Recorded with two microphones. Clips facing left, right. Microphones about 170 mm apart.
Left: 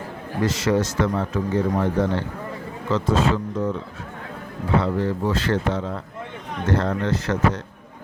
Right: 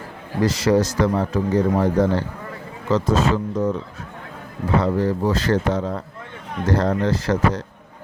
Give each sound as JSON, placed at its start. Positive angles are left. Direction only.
{"t": 0.4, "sound": "speech", "side_deg": -35}
{"t": 4.8, "sound": "speech", "side_deg": -40}